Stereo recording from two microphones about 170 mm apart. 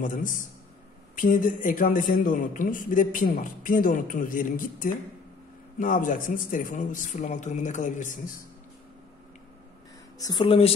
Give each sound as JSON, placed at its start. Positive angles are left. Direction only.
{"t": 0.0, "sound": "a man's voice", "side_deg": 50}
{"t": 10.1, "sound": "speech", "side_deg": 25}